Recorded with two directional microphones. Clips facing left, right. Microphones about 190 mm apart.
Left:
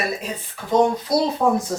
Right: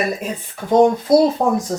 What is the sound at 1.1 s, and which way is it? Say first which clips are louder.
Speech: right 7 dB; 50° right (ahead or behind).